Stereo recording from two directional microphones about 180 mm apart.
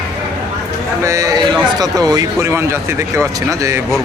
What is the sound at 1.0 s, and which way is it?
Speech, 15° right (ahead or behind).